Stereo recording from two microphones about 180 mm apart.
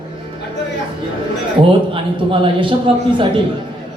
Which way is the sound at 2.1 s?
25° right (ahead or behind).